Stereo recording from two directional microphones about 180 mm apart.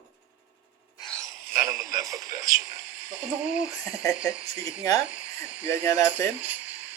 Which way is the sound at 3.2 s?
5° right (ahead or behind).